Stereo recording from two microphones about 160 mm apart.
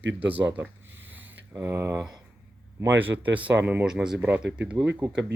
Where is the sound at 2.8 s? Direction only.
10° right (ahead or behind).